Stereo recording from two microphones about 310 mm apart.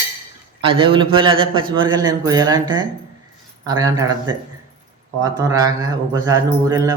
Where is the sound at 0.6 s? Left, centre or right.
Centre.